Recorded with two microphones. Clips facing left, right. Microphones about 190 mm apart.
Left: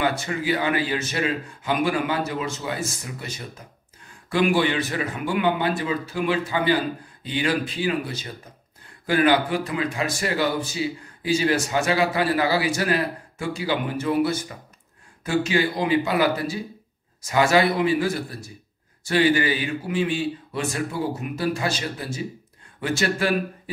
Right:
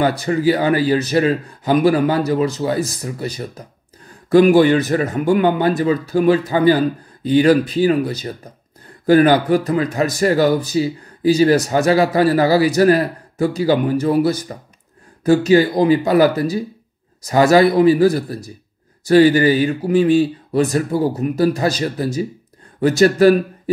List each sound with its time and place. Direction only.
0.0 s a man's voice: 40° right (ahead or behind)